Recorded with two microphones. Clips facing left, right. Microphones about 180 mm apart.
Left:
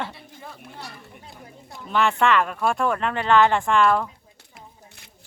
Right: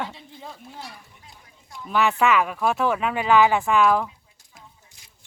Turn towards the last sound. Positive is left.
turn(degrees=-5)  # may be behind; listen again after turning